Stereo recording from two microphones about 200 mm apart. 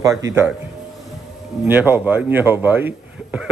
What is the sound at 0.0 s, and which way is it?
Speech, 15° right (ahead or behind).